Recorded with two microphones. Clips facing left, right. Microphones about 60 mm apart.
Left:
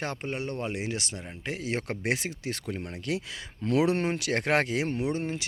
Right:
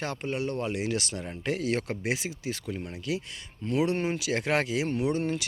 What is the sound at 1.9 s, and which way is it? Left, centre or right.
Speech, left.